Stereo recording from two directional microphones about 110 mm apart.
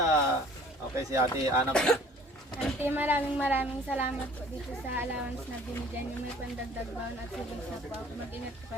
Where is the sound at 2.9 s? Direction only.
15° right (ahead or behind).